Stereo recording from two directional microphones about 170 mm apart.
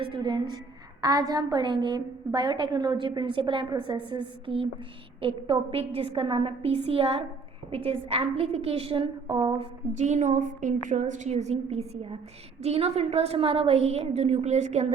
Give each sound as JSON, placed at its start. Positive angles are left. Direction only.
{"t": 0.0, "sound": "a woman's voice", "side_deg": -30}